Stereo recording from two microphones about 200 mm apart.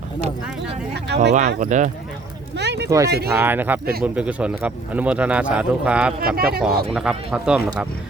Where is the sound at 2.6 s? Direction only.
55° right (ahead or behind).